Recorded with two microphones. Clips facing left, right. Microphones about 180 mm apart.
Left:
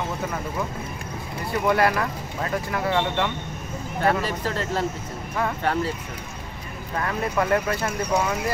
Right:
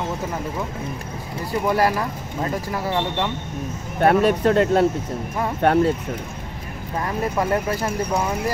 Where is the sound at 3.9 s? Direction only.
60° right (ahead or behind).